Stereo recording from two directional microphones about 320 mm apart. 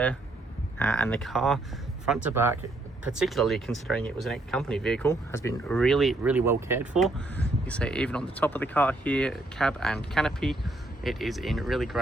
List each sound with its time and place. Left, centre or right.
0.8 s speech: centre